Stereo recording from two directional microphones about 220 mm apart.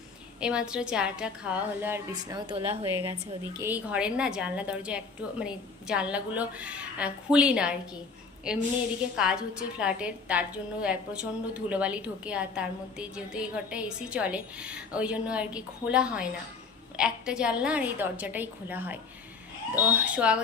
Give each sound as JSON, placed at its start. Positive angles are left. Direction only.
{"t": 0.3, "sound": "a woman's voice", "side_deg": -5}